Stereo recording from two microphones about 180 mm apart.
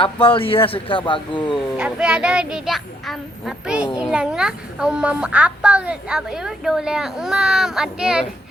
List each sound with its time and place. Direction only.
0.0 s a man's voice: 30° left (ahead or behind)
1.7 s a child's voice: 5° right (ahead or behind)